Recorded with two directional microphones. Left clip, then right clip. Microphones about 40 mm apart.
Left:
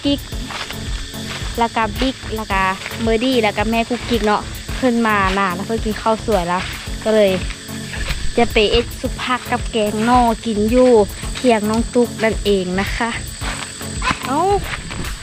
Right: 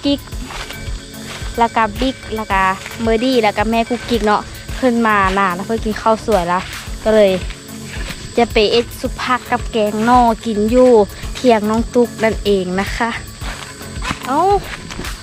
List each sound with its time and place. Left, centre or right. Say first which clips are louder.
1.3 s speech: right 3 dB; right
7.9 s music: right 1 dB; centre
8.5 s speech: right 2 dB; right
9.1 s speech: right 3 dB; centre
14.0 s music: left 1 dB; centre
14.3 s speech: right 4 dB; right